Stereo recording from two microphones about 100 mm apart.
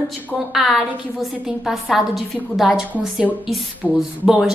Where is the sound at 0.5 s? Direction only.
Centre (ahead or behind).